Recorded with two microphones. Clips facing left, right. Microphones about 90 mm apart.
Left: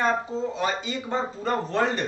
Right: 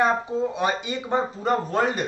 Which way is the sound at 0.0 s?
15° right (ahead or behind).